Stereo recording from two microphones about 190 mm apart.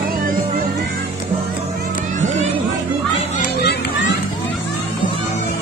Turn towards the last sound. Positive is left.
turn(degrees=65)  # may be behind; listen again after turning